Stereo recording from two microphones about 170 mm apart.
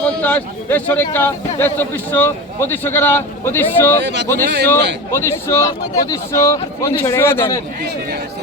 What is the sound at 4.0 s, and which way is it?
Speech, 90° right.